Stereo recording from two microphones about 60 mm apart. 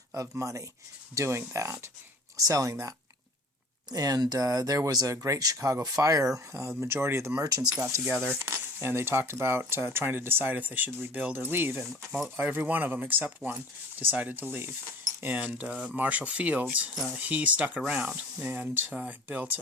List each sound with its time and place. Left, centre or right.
0.1 s speech: right
1.1 s speech: right
2.3 s speech: right
3.8 s speech: right
5.1 s speech: right
6.5 s speech: right
7.3 s speech: right
7.8 s speech: right
8.0 s speech: right